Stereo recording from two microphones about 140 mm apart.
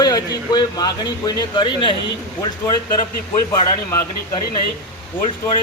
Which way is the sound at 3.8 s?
20° left (ahead or behind).